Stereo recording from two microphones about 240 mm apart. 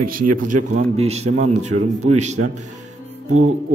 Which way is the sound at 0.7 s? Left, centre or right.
Right.